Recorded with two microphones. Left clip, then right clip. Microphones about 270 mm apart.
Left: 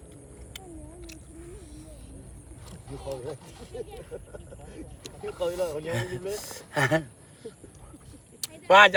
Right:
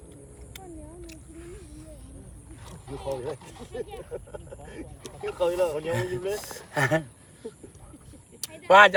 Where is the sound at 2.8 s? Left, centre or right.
Right.